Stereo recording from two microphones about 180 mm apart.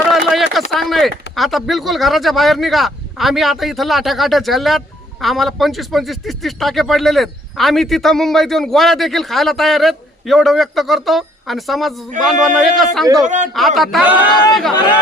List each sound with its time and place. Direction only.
0.1 s a sound: centre (ahead or behind)
1.4 s a man's voice: centre (ahead or behind)
13.2 s a man's voice: 40° right (ahead or behind)
13.5 s a man's voice: centre (ahead or behind)